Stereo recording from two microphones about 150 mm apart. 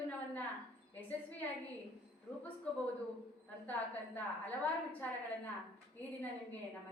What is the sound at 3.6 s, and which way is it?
Speech, 10° left (ahead or behind).